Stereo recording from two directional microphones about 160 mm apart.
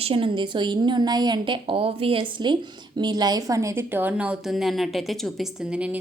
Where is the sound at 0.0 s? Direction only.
35° right (ahead or behind).